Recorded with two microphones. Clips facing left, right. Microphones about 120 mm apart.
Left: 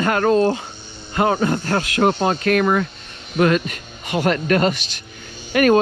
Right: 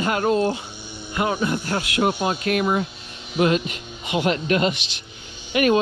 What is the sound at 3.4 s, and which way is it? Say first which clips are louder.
Speech: left 3 dB; 50° left (ahead or behind).